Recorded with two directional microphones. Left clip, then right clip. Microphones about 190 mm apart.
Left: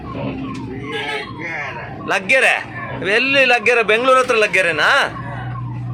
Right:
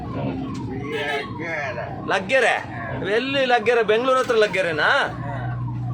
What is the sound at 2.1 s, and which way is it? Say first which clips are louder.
A man's voice: left 5 dB; centre (ahead or behind).